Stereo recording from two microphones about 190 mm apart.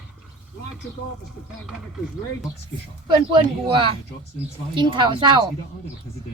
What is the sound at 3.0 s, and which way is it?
Speech, 25° right (ahead or behind).